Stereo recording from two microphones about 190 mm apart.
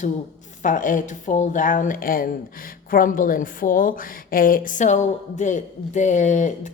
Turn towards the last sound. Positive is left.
turn(degrees=40)  # may be behind; listen again after turning